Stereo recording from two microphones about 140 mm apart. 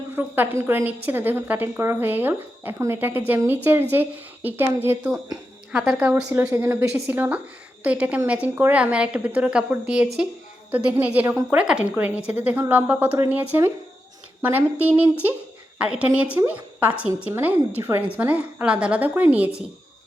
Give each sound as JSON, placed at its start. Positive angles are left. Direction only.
{"t": 0.2, "sound": "a woman's voice", "side_deg": -15}
{"t": 6.1, "sound": "a woman's voice", "side_deg": -15}